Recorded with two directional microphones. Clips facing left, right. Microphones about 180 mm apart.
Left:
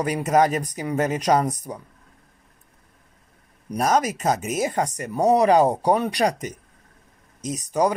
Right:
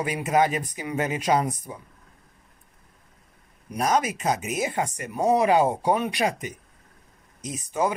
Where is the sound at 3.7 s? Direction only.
40° left (ahead or behind).